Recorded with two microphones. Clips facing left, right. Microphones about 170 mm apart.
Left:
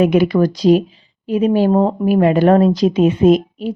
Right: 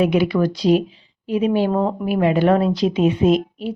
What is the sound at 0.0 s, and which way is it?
Speech, 45° left (ahead or behind).